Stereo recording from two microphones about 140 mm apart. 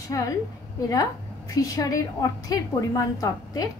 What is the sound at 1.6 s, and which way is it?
Speech, 25° left (ahead or behind).